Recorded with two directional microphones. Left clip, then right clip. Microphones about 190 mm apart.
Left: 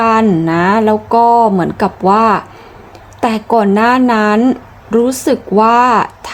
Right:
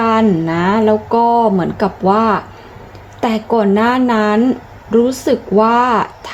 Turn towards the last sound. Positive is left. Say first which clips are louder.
# left 4 dB
turn(degrees=20)  # may be behind; listen again after turning